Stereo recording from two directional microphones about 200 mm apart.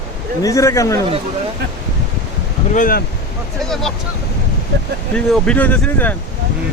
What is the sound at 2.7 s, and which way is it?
Speech, 45° left (ahead or behind).